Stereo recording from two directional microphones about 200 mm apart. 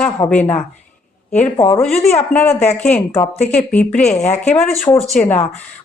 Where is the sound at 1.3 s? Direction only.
35° left (ahead or behind).